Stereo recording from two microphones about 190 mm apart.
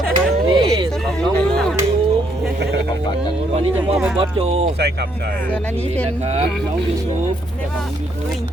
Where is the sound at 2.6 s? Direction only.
65° right (ahead or behind).